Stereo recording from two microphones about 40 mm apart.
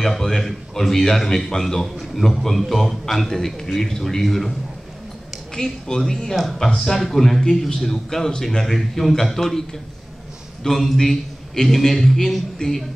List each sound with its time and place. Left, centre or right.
0.0 s a man's voice: centre
5.5 s a man's voice: centre
6.3 s a man's voice: centre